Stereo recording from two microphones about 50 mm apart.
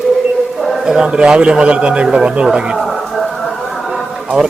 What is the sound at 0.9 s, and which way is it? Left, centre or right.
A man's voice, centre.